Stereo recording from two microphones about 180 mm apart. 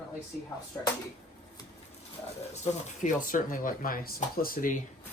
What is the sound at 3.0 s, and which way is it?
Speech, 45° left (ahead or behind).